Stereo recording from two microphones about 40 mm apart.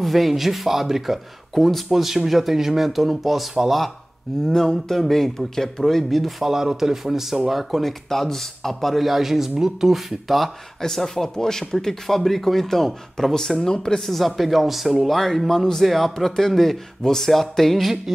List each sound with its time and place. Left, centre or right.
0.0 s speech: centre
4.5 s speech: centre
6.0 s speech: centre